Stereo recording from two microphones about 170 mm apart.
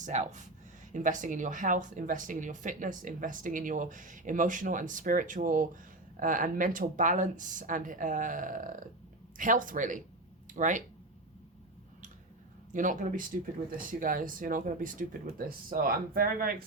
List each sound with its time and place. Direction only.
0.0 s speech: 45° right (ahead or behind)
12.7 s speech: 50° right (ahead or behind)